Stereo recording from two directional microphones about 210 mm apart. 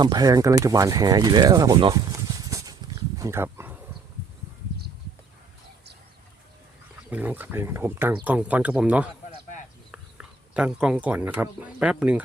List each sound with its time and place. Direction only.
0.0 s speech: 20° right (ahead or behind)
2.4 s a sound: 15° right (ahead or behind)
7.1 s speech: 10° right (ahead or behind)